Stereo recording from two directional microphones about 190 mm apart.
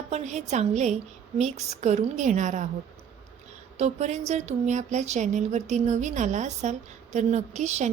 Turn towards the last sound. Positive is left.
turn(degrees=-35)  # may be behind; listen again after turning